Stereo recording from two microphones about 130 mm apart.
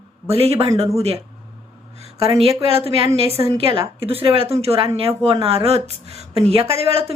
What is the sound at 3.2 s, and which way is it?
Speech, 50° left (ahead or behind).